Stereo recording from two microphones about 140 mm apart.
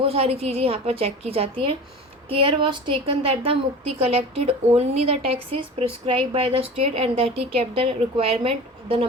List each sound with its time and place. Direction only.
0.0 s a woman's voice: 45° right (ahead or behind)